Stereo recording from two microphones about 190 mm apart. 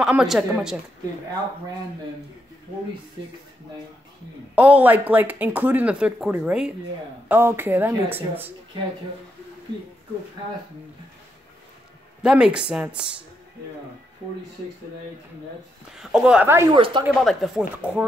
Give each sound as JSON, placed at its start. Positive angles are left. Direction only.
{"t": 0.0, "sound": "speech", "side_deg": -5}
{"t": 4.6, "sound": "speech", "side_deg": -10}
{"t": 12.2, "sound": "speech", "side_deg": -5}
{"t": 16.0, "sound": "speech", "side_deg": -5}
{"t": 16.7, "sound": "speech", "side_deg": -25}
{"t": 17.2, "sound": "speech", "side_deg": 0}